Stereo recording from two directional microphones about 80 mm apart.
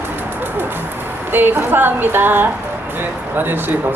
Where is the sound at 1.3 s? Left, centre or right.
Right.